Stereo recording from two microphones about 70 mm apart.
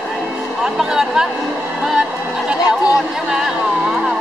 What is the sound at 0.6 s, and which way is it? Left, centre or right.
Speech, centre.